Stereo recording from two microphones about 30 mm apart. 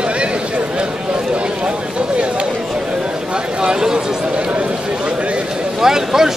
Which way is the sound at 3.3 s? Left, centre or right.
Right.